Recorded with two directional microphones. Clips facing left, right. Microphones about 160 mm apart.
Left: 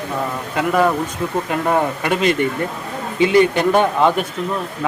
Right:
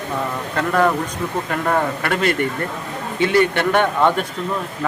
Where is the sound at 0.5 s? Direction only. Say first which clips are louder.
Left 1 dB; 10° left (ahead or behind).